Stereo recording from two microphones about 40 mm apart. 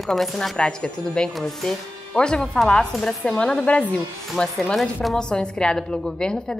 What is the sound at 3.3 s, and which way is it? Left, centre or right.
A woman's voice, left.